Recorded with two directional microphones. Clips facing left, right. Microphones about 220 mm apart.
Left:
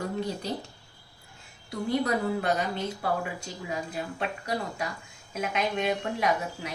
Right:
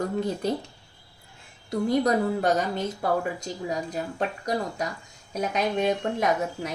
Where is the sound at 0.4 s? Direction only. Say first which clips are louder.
Right 6 dB; 50° right (ahead or behind).